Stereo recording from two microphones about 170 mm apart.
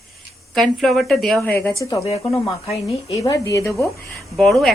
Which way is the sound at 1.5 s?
15° left (ahead or behind).